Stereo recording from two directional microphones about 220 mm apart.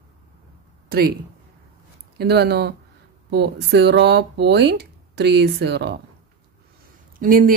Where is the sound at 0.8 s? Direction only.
45° right (ahead or behind).